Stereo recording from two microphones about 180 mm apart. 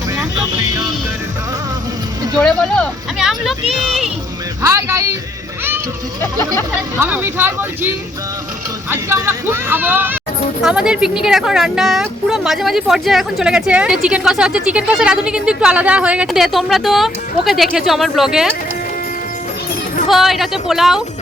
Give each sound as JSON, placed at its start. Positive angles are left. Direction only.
{"t": 2.4, "sound": "speech", "side_deg": 5}
{"t": 4.6, "sound": "a sound", "side_deg": -15}
{"t": 6.9, "sound": "speech", "side_deg": -10}
{"t": 8.9, "sound": "speech", "side_deg": -10}
{"t": 20.1, "sound": "speech", "side_deg": 0}